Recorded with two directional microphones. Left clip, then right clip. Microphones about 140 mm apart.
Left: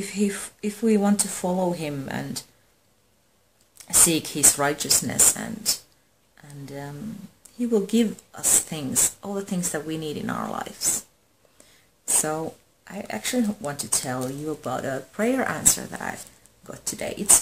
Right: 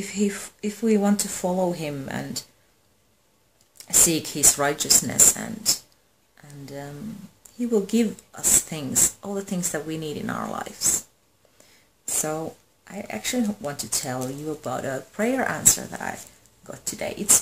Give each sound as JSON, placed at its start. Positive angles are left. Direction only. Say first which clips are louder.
{"t": 0.0, "sound": "speech", "louder": "even", "side_deg": 5}
{"t": 3.7, "sound": "speech", "louder": "even", "side_deg": 5}
{"t": 12.3, "sound": "speech", "louder": "left 1 dB", "side_deg": 5}